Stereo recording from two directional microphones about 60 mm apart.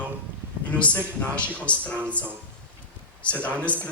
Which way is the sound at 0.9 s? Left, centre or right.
Left.